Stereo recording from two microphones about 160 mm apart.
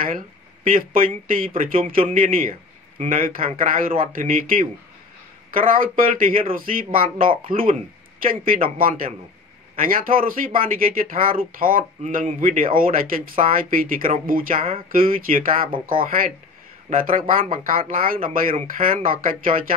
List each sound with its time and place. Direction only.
0.7 s speech: 60° right (ahead or behind)
8.7 s speech: 60° right (ahead or behind)